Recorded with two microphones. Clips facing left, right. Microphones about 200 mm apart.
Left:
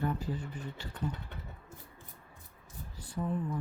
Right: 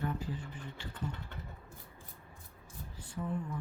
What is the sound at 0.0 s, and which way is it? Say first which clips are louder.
Speech: left 3 dB; 40° left (ahead or behind).